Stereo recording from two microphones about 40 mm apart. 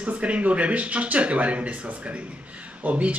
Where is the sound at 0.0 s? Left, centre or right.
Right.